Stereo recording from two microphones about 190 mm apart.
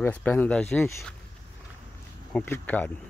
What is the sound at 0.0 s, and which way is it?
Speech, 10° left (ahead or behind).